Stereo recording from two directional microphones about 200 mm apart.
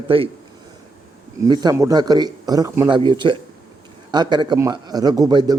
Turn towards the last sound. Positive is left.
turn(degrees=-20)  # may be behind; listen again after turning